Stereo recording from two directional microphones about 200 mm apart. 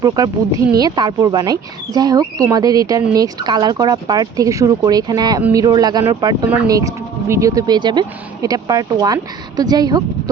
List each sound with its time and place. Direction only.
0.0 s speech: 20° right (ahead or behind)